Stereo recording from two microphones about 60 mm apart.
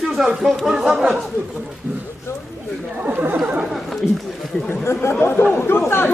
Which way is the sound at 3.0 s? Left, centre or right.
Right.